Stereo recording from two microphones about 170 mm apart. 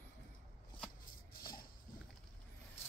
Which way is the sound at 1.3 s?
60° left (ahead or behind).